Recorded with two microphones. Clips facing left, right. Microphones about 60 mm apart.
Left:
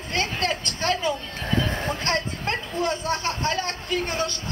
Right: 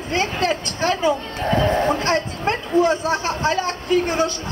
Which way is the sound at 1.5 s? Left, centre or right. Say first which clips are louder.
Right 8 dB; right.